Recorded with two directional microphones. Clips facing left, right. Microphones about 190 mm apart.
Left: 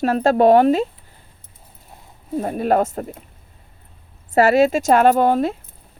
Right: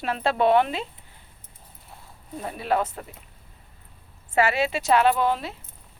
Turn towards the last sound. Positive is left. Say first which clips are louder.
# left 7 dB
turn(degrees=50)  # may be behind; listen again after turning